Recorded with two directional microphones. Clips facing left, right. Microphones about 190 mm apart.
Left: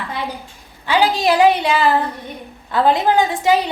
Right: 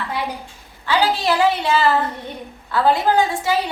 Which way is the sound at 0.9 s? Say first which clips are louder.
Left 3 dB; 15° left (ahead or behind).